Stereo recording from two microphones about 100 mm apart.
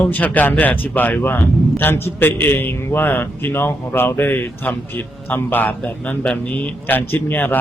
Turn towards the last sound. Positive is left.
turn(degrees=20)  # may be behind; listen again after turning